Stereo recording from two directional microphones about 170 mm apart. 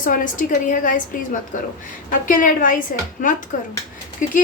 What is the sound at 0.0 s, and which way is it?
A woman's voice, 50° left (ahead or behind).